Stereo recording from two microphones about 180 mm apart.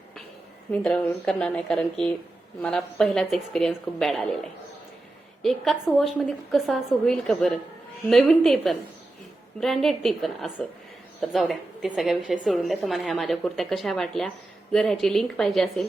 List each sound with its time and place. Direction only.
0.7 s a woman's voice: 5° left (ahead or behind)
5.4 s a woman's voice: centre (ahead or behind)